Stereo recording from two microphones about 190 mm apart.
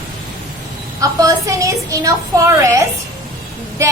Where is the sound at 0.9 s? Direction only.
15° right (ahead or behind).